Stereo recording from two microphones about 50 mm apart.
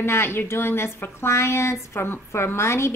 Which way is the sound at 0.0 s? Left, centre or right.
Left.